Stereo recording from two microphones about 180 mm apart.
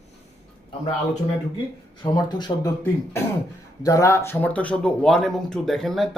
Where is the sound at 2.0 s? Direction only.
25° left (ahead or behind).